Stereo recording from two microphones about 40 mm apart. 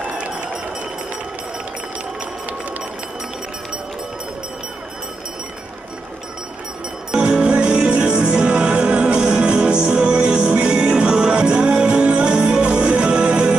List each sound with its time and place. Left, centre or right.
7.1 s music: centre